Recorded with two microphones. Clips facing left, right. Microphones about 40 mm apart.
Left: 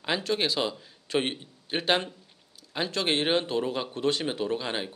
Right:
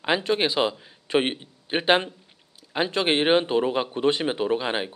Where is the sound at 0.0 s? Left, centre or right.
Right.